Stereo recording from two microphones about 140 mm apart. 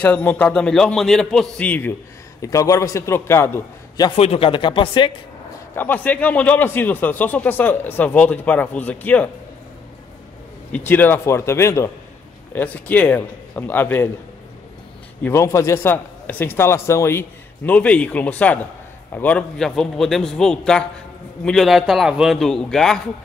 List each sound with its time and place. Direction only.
0.0 s a man's voice: 10° left (ahead or behind)
2.4 s a man's voice: 25° left (ahead or behind)
4.2 s speech: 45° left (ahead or behind)
5.8 s a man's voice: 10° left (ahead or behind)
10.7 s a man's voice: 15° left (ahead or behind)
15.2 s a man's voice: 20° left (ahead or behind); by 22.9 s 5° left (ahead or behind)